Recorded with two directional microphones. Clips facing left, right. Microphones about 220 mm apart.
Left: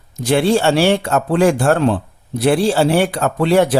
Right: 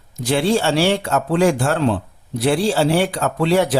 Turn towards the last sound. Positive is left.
turn(degrees=55)  # may be behind; listen again after turning